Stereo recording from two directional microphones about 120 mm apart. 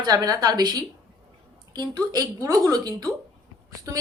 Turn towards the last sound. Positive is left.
turn(degrees=-30)  # may be behind; listen again after turning